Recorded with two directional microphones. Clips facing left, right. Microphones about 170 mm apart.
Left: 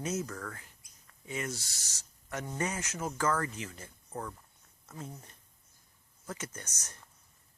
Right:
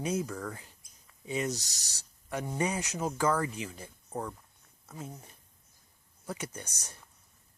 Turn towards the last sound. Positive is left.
turn(degrees=-10)  # may be behind; listen again after turning